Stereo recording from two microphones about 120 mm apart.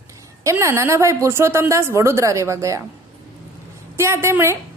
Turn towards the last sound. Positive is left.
turn(degrees=-20)  # may be behind; listen again after turning